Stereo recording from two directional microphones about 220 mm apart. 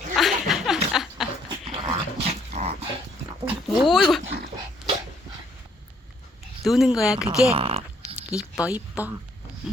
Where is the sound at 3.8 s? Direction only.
Centre (ahead or behind).